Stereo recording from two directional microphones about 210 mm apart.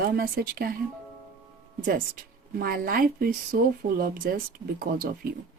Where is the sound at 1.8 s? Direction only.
40° right (ahead or behind).